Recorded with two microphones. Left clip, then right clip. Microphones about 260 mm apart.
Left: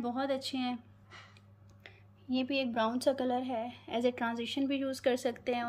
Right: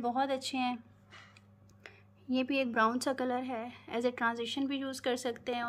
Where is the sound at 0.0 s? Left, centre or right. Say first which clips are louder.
Right 2 dB; centre.